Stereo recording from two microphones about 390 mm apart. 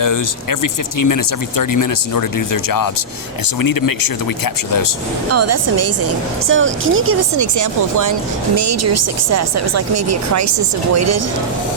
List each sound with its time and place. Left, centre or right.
0.6 s speech: left
5.3 s speech: right
7.5 s speech: right